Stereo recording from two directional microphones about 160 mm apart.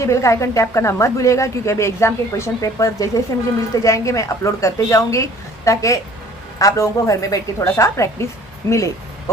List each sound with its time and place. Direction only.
0.0 s speech: 20° left (ahead or behind)